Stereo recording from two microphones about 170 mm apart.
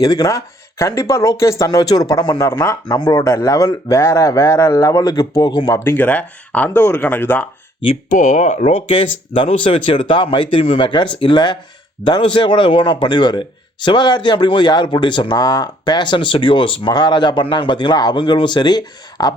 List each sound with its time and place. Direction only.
0.0 s speech: 20° left (ahead or behind)
7.9 s speech: 45° left (ahead or behind)
8.9 s speech: 30° left (ahead or behind)